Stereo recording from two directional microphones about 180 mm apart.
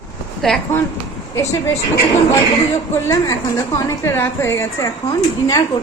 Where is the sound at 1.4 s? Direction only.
15° left (ahead or behind).